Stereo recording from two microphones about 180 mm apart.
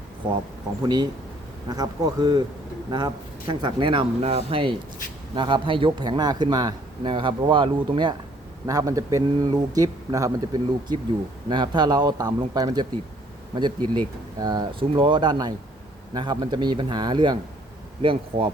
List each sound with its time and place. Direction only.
0.8 s a man's voice: 25° right (ahead or behind)